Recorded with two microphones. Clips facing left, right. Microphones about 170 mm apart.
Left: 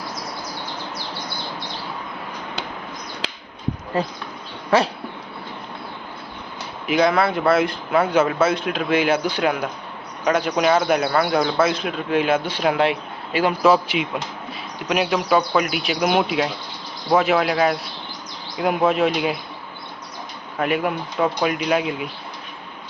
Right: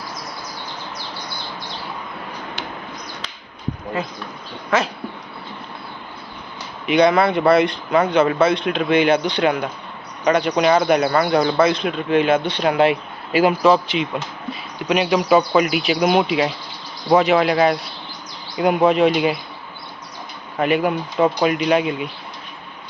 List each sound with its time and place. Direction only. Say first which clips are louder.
3.9 s speech: left 2 dB; 35° left (ahead or behind)
6.8 s speech: right 3 dB; centre (ahead or behind)
13.6 s speech: right 1 dB; 5° left (ahead or behind)
20.6 s speech: right 3 dB; centre (ahead or behind)